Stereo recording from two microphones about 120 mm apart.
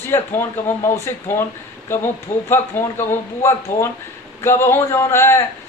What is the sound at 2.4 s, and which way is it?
Speech, 20° left (ahead or behind).